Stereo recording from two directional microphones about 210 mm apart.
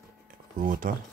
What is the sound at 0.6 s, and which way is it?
Speech, 40° right (ahead or behind).